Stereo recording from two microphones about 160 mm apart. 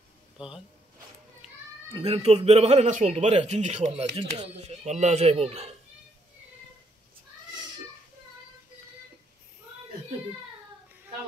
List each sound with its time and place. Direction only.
1.9 s a man's voice: 30° right (ahead or behind)